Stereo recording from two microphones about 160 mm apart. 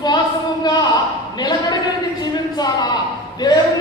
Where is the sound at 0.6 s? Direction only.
25° left (ahead or behind).